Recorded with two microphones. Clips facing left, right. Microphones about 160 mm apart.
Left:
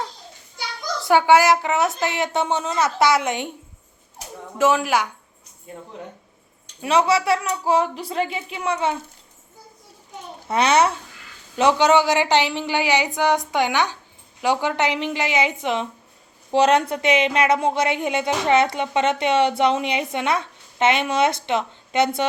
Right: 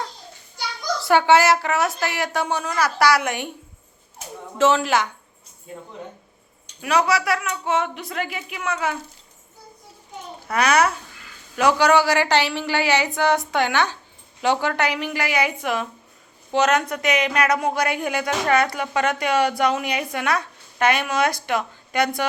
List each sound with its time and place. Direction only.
1.0 s a woman's voice: 15° left (ahead or behind)
4.5 s a woman's voice: 10° left (ahead or behind)
6.8 s a woman's voice: 25° left (ahead or behind)
10.5 s a woman's voice: 25° left (ahead or behind)